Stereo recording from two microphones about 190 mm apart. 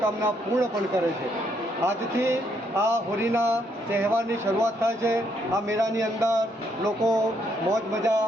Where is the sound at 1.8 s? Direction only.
15° right (ahead or behind).